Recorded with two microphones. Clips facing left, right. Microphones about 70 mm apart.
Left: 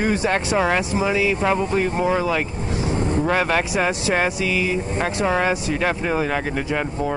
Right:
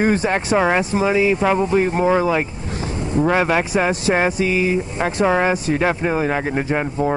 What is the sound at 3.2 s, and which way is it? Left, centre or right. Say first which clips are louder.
Speech: right 5 dB; centre.